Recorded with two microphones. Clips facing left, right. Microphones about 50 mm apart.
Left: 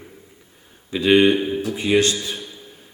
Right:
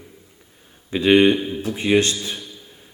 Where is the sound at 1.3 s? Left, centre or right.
Centre.